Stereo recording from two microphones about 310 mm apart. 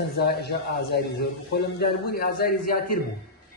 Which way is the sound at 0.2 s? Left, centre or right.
Left.